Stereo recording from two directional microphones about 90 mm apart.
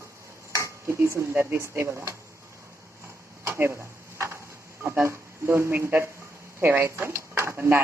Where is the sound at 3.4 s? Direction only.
30° right (ahead or behind).